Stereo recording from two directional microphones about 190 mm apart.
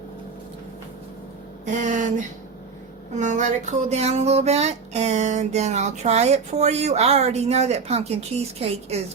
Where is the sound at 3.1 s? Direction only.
40° right (ahead or behind).